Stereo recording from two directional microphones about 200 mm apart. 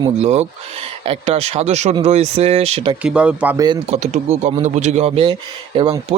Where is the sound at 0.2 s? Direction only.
35° right (ahead or behind).